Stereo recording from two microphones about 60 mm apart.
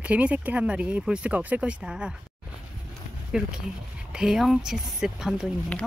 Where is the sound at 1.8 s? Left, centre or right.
Centre.